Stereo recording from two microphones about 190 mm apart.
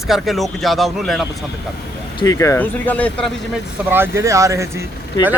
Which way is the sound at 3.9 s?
10° right (ahead or behind).